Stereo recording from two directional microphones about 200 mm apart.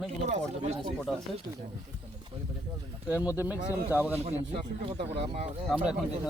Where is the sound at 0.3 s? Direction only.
35° right (ahead or behind).